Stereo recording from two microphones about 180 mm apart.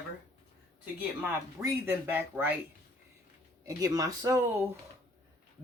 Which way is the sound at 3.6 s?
20° right (ahead or behind).